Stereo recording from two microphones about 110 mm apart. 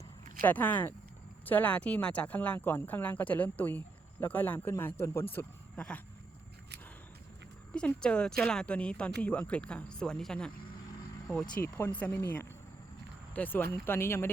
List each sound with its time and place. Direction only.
0.4 s speech: 15° left (ahead or behind)
7.7 s speech: 10° left (ahead or behind)